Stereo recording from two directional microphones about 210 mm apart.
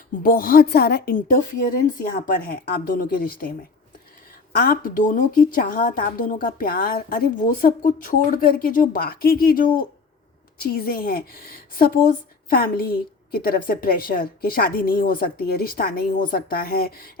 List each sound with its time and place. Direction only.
0.2 s a woman's voice: 45° left (ahead or behind)
4.5 s a woman's voice: 45° left (ahead or behind)